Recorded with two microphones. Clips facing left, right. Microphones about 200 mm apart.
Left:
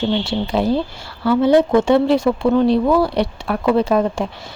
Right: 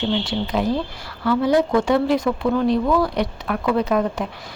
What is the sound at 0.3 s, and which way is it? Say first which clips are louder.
A woman's voice: left 3 dB; 30° left (ahead or behind).